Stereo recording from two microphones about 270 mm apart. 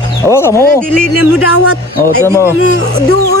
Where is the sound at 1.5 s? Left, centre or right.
Left.